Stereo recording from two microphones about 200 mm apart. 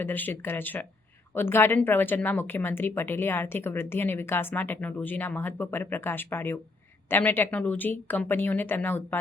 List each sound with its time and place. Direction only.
0.0 s a woman's voice: 10° left (ahead or behind)